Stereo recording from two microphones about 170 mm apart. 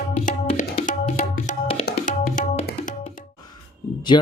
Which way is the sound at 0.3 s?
55° left (ahead or behind).